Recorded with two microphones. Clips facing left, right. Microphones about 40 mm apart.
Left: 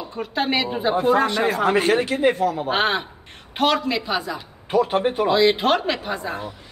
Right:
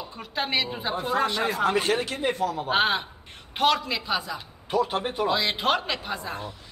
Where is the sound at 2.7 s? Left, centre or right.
Centre.